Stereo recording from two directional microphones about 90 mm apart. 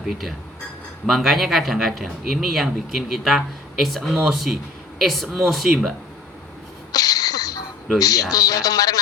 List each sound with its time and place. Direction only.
0.0 s speech: centre (ahead or behind)
6.9 s a sound: 45° left (ahead or behind)
7.9 s speech: 45° left (ahead or behind)